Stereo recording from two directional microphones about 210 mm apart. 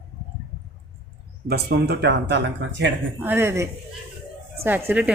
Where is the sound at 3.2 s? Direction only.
10° right (ahead or behind).